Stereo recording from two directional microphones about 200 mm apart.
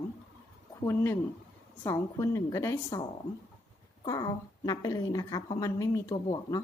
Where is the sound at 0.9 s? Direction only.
10° left (ahead or behind).